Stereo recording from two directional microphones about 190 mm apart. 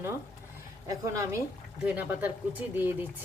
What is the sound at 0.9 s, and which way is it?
A woman's voice, 15° right (ahead or behind).